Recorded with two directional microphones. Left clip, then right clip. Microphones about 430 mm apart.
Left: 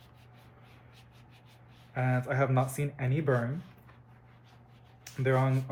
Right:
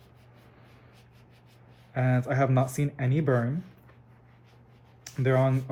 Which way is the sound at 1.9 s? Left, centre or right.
Right.